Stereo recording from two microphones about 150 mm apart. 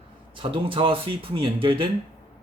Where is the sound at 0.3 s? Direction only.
35° right (ahead or behind).